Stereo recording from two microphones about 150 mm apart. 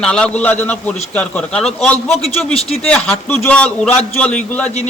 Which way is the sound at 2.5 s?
45° left (ahead or behind).